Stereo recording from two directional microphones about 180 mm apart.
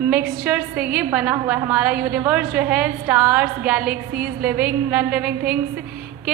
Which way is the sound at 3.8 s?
55° right (ahead or behind).